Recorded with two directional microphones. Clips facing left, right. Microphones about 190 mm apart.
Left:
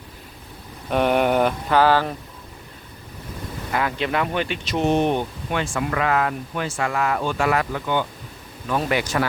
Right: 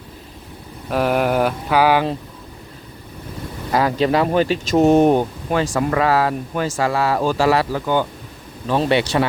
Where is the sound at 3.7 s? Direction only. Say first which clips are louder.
Right 7 dB; 35° right (ahead or behind).